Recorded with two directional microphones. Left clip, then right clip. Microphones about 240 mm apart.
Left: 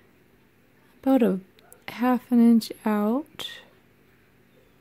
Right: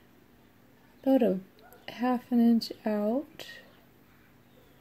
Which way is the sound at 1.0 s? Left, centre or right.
Left.